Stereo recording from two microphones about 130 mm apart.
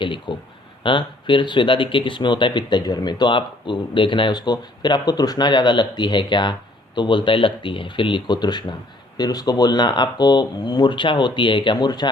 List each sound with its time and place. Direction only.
0.0 s speech: 40° left (ahead or behind)